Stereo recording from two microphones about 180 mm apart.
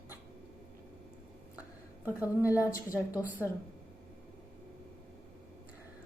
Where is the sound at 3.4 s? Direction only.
15° left (ahead or behind).